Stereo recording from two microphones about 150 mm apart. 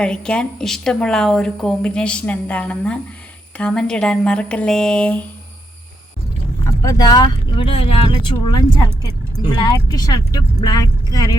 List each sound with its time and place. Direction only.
0.0 s speech: 5° left (ahead or behind)
6.7 s speech: 20° left (ahead or behind)